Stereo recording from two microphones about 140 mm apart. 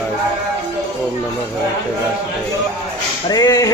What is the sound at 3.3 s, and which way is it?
Speech, 25° left (ahead or behind).